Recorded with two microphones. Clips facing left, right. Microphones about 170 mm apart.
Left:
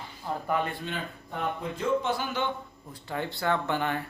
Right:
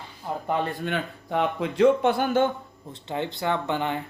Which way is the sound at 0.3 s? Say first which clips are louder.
Right 2 dB; 15° right (ahead or behind).